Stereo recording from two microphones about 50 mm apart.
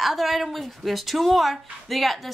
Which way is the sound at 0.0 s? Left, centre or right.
Centre.